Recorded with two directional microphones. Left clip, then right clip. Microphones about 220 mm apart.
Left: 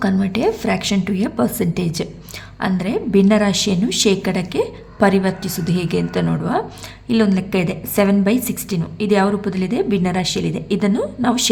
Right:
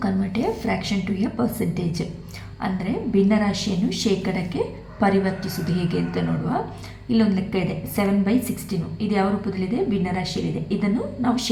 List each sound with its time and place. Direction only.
0.0 s a woman's voice: 35° left (ahead or behind)